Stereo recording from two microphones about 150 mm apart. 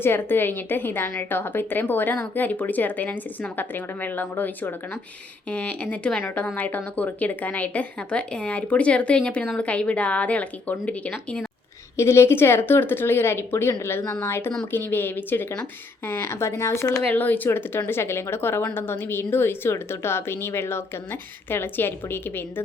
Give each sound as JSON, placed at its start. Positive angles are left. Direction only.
{"t": 0.0, "sound": "speech", "side_deg": 15}